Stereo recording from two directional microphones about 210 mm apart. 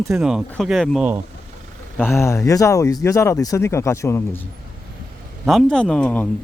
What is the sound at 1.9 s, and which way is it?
Speech, 10° left (ahead or behind).